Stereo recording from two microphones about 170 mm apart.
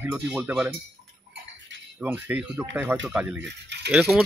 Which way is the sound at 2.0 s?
10° right (ahead or behind).